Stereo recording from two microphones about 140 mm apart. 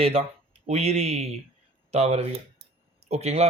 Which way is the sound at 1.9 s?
50° right (ahead or behind).